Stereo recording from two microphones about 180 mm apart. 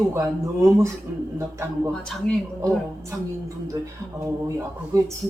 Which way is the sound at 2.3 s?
5° left (ahead or behind).